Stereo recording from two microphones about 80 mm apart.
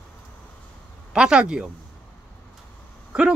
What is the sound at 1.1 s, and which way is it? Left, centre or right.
Speech, centre.